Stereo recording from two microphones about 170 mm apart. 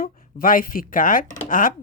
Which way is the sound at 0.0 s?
55° left (ahead or behind).